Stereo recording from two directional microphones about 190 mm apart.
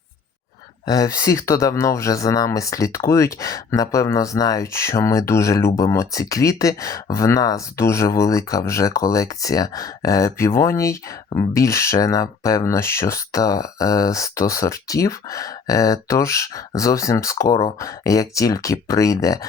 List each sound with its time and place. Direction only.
0.9 s speech: 20° left (ahead or behind)